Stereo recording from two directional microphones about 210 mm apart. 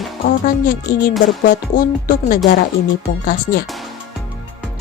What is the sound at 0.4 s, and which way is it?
Speech, 40° left (ahead or behind).